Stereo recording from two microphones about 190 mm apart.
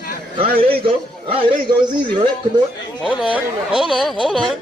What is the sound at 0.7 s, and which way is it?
A man's voice, 30° right (ahead or behind).